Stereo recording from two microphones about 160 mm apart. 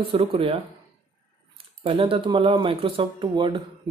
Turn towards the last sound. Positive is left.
turn(degrees=-30)  # may be behind; listen again after turning